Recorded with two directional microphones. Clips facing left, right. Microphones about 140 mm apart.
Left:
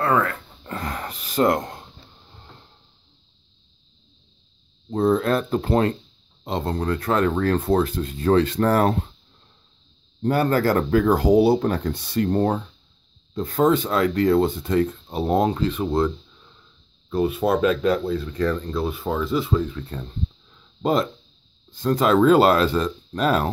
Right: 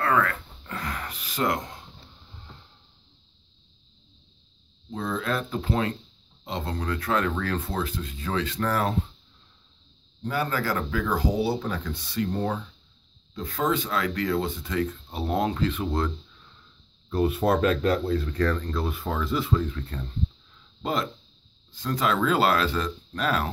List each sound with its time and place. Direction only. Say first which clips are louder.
0.0 s a sound: left 3 dB; 30° left (ahead or behind); by 1.9 s 50° left (ahead or behind)
4.9 s speech: left 9 dB; 45° left (ahead or behind)
7.6 s speech: left 10 dB; 55° left (ahead or behind)
10.2 s speech: left 8 dB; 55° left (ahead or behind); by 11.7 s 75° left (ahead or behind)
12.1 s speech: left 7 dB; 50° left (ahead or behind)
13.3 s a man's voice: left 7 dB; 35° left (ahead or behind)
13.6 s speech: left 7 dB; 45° left (ahead or behind)
17.1 s speech: left 2 dB; 15° left (ahead or behind)
20.8 s speech: left 7 dB; 40° left (ahead or behind)